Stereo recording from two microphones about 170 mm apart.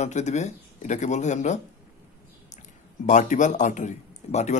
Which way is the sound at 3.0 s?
45° left (ahead or behind).